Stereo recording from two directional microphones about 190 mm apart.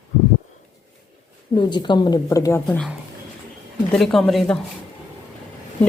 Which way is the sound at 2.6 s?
5° left (ahead or behind).